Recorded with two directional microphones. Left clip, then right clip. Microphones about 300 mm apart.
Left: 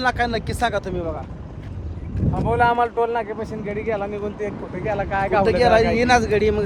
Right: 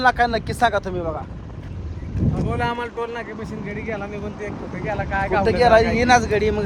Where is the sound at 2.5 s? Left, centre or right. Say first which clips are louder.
Left 9 dB; left.